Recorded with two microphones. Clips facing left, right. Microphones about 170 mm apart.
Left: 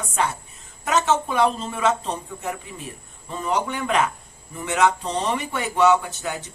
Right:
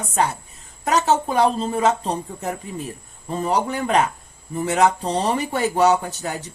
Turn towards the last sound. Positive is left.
turn(degrees=-35)  # may be behind; listen again after turning